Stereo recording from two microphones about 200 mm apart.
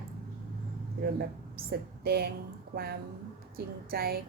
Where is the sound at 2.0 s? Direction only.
50° right (ahead or behind).